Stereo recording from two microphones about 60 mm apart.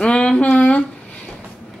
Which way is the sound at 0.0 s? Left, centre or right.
Centre.